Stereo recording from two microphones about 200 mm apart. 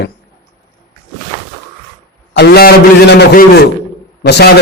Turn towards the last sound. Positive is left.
turn(degrees=55)  # may be behind; listen again after turning